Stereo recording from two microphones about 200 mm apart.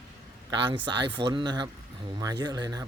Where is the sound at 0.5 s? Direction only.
25° right (ahead or behind).